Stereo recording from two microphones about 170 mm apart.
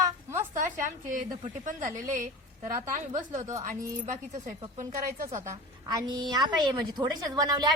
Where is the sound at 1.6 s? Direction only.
45° right (ahead or behind).